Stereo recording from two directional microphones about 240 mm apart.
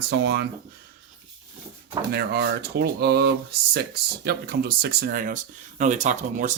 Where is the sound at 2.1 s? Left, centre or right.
Right.